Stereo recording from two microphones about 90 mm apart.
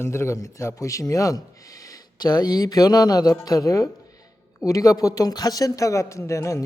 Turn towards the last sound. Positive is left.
turn(degrees=35)  # may be behind; listen again after turning